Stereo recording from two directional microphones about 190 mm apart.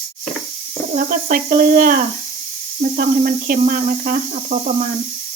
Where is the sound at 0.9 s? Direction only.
45° right (ahead or behind).